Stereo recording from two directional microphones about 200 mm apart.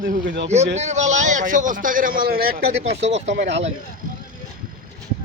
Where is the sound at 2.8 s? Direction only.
35° right (ahead or behind).